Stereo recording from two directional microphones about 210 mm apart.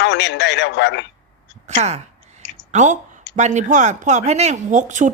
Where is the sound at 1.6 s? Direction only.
35° right (ahead or behind).